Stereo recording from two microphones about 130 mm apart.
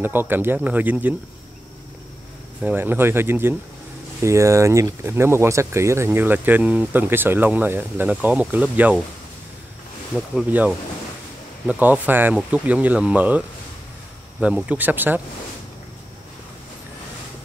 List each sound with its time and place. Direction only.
0.0 s speech: 15° right (ahead or behind)
2.6 s speech: 15° right (ahead or behind)
10.3 s speech: 10° right (ahead or behind)
14.4 s speech: 10° right (ahead or behind)